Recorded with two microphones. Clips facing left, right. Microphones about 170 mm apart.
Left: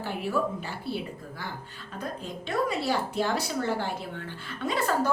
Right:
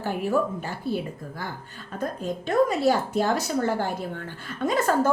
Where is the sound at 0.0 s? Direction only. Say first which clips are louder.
Right 4 dB; 45° right (ahead or behind).